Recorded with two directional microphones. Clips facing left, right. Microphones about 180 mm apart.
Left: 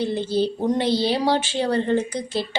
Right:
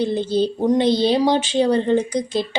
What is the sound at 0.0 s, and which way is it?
A woman's voice, 20° right (ahead or behind).